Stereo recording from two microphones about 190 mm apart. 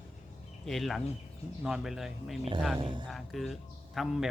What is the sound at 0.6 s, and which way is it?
A man's voice, centre (ahead or behind).